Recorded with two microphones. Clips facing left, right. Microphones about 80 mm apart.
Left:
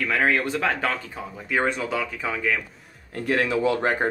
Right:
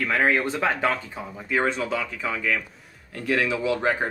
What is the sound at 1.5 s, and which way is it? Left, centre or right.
Speech, centre.